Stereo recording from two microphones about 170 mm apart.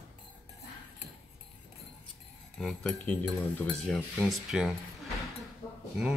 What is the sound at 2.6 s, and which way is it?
Speech, centre (ahead or behind).